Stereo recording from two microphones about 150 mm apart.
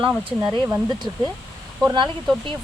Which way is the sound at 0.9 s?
30° right (ahead or behind).